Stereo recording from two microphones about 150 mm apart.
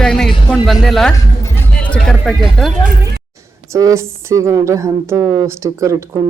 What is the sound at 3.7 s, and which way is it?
A woman's voice, 20° right (ahead or behind).